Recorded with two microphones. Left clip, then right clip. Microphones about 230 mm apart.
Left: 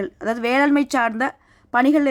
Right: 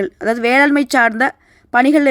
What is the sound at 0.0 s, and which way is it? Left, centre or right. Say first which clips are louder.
A woman's voice: right 6 dB; centre.